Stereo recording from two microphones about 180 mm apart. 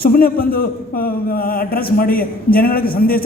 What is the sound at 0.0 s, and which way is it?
A man's voice, 55° left (ahead or behind).